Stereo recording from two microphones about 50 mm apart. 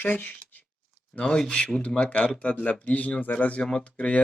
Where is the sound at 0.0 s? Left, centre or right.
Left.